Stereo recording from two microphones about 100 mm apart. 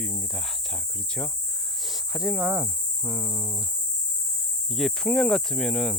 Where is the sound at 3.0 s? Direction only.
25° right (ahead or behind).